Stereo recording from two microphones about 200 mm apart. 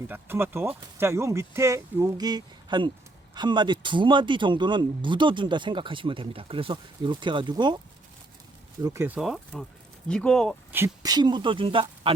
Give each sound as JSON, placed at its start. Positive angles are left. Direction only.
{"t": 0.1, "sound": "speech", "side_deg": -10}
{"t": 8.8, "sound": "speech", "side_deg": -15}
{"t": 10.7, "sound": "speech", "side_deg": -10}